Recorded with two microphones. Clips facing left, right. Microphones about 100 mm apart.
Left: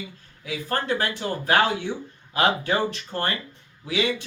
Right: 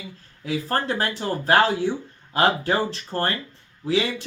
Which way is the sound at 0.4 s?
35° right (ahead or behind).